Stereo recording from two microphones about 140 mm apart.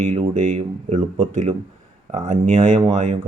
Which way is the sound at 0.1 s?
55° right (ahead or behind).